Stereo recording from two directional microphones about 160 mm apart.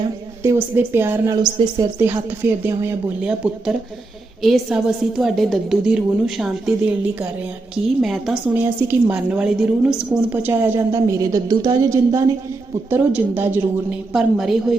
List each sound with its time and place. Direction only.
0.4 s speech: 15° right (ahead or behind)
2.4 s a woman's voice: 15° right (ahead or behind)
8.4 s a woman's voice: 15° right (ahead or behind)
14.1 s a woman's voice: 5° right (ahead or behind)